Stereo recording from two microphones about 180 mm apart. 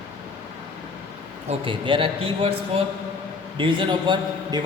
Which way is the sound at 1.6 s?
30° right (ahead or behind).